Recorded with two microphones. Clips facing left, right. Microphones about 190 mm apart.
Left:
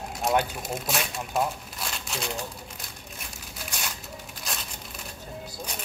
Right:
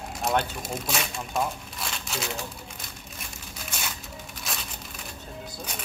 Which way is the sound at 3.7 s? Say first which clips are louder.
Even; centre (ahead or behind).